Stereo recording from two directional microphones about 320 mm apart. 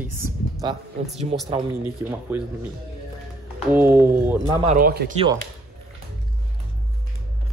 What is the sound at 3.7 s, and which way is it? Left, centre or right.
Speech, centre.